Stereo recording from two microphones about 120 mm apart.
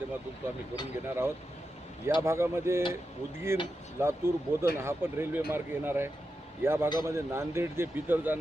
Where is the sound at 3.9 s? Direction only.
20° right (ahead or behind).